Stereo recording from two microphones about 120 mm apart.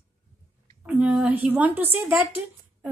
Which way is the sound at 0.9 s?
10° right (ahead or behind).